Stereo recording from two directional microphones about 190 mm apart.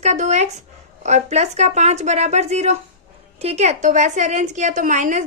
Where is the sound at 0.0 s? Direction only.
35° right (ahead or behind).